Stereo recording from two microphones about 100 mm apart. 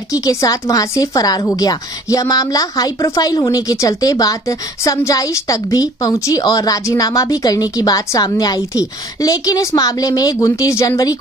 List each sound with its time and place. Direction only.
0.1 s a woman's voice: 35° left (ahead or behind)